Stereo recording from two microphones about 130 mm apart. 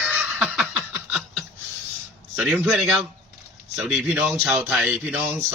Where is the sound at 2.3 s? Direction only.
10° right (ahead or behind).